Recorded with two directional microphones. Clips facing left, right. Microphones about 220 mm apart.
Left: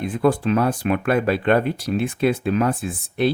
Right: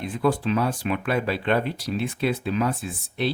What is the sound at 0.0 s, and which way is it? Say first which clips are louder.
Speech: left 4 dB; 55° left (ahead or behind).